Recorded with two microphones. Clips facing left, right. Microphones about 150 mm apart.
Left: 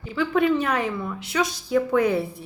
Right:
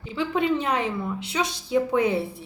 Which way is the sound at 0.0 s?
25° right (ahead or behind).